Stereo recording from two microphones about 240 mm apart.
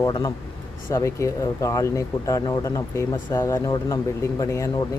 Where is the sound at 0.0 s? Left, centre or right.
Centre.